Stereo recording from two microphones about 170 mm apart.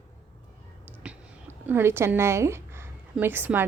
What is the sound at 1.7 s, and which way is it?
A woman's voice, 15° right (ahead or behind).